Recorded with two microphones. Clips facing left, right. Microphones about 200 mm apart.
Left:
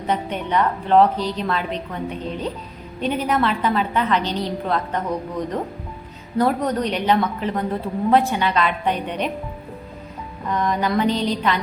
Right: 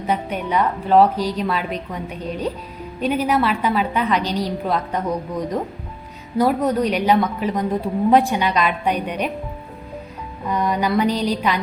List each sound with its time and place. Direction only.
0.1 s a woman's voice: 10° right (ahead or behind)
3.0 s a woman's voice: 10° right (ahead or behind)
10.5 s a woman's voice: 10° right (ahead or behind)